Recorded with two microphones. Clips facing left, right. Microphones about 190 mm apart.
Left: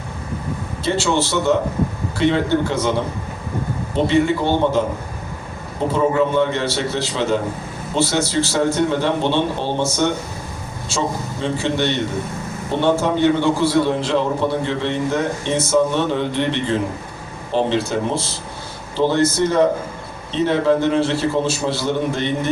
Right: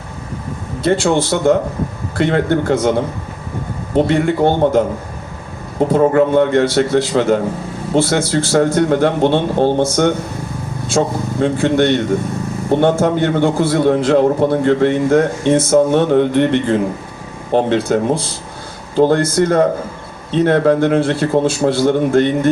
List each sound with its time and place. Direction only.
0.8 s a man's voice: 50° right (ahead or behind)
3.9 s a man's voice: 50° right (ahead or behind)
5.9 s a man's voice: 55° right (ahead or behind)